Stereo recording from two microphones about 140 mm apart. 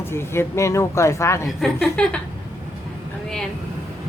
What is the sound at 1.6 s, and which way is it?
Speech, 5° left (ahead or behind).